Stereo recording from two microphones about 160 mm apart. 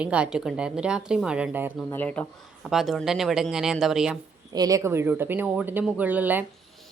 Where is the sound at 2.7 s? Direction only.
Centre (ahead or behind).